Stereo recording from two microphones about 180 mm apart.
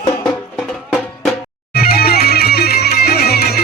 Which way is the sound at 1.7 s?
60° left (ahead or behind).